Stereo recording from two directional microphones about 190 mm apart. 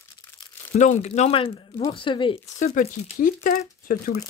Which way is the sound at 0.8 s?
40° left (ahead or behind).